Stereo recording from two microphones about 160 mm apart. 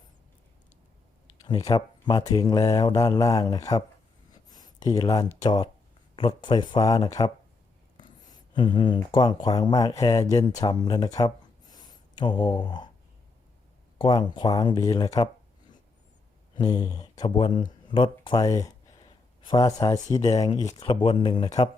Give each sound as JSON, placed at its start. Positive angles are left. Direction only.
{"t": 1.5, "sound": "speech", "side_deg": 25}
{"t": 8.2, "sound": "a sound", "side_deg": 25}
{"t": 9.1, "sound": "speech", "side_deg": 25}
{"t": 11.7, "sound": "a sound", "side_deg": 25}
{"t": 14.0, "sound": "speech", "side_deg": 25}
{"t": 16.6, "sound": "speech", "side_deg": 25}